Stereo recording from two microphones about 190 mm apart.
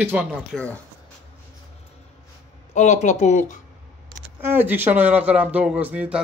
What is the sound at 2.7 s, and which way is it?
Speech, 40° left (ahead or behind).